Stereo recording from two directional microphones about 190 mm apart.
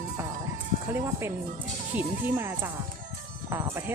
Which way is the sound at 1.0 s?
15° right (ahead or behind).